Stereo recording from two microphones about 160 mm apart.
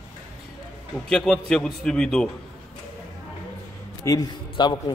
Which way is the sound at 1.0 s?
5° left (ahead or behind).